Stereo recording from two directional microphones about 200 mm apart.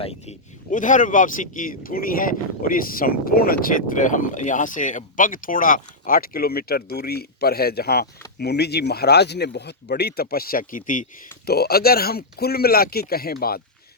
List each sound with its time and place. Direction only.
0.0 s speech: 30° left (ahead or behind); by 13.6 s 50° left (ahead or behind)